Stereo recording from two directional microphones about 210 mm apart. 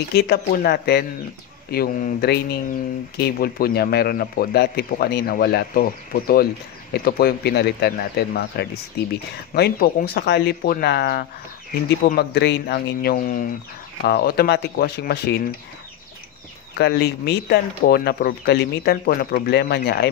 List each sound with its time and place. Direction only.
0.1 s speech: 50° left (ahead or behind)
16.7 s speech: 50° left (ahead or behind)